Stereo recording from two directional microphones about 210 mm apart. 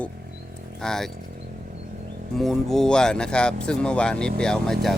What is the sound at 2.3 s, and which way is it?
Speech, centre (ahead or behind).